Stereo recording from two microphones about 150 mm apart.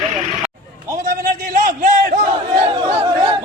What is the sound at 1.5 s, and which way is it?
Crowd, 65° right (ahead or behind).